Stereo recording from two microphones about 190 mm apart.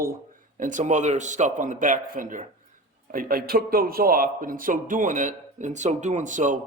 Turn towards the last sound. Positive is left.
turn(degrees=-40)  # may be behind; listen again after turning